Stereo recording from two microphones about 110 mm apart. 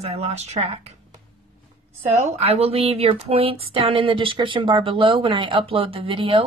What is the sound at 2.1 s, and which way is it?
Speech, 90° right.